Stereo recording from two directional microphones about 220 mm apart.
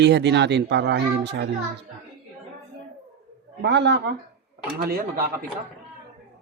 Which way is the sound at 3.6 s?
50° right (ahead or behind).